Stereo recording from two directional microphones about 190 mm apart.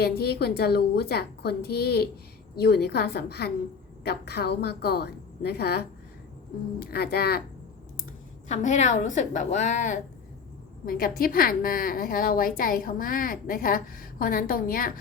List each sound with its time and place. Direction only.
0.0 s a woman's voice: 55° left (ahead or behind)
8.4 s a woman's voice: 40° left (ahead or behind)